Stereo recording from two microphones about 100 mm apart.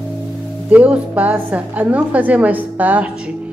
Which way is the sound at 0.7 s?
15° right (ahead or behind).